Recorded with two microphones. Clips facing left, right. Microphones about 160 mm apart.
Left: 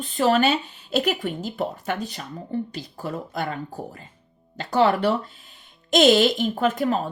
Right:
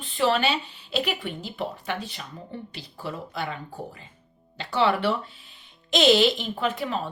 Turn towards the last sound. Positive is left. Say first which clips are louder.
# left 6 dB
turn(degrees=45)  # may be behind; listen again after turning